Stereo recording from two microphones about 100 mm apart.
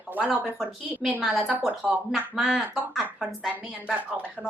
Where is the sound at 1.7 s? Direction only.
15° right (ahead or behind).